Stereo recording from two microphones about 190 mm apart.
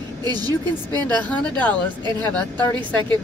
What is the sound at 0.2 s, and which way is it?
Speech, 20° right (ahead or behind).